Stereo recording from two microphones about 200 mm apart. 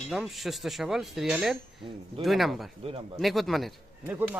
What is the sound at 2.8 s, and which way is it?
Speech, 25° right (ahead or behind).